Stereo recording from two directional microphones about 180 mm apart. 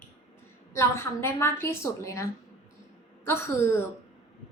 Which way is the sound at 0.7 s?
15° left (ahead or behind).